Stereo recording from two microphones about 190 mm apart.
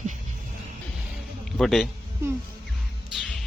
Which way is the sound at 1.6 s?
Centre (ahead or behind).